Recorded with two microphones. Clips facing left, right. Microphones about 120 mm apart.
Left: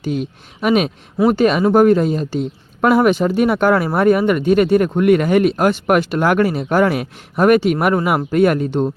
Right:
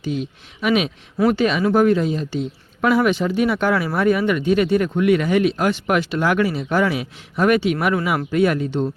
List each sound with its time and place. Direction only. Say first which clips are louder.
0.0 s speech: left 3 dB; 50° left (ahead or behind)